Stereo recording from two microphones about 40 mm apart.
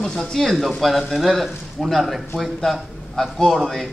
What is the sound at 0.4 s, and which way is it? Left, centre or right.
A man's voice, centre.